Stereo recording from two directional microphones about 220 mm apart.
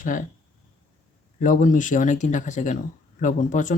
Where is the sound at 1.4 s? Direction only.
35° left (ahead or behind).